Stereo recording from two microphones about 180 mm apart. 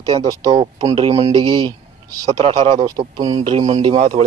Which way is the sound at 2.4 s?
40° right (ahead or behind).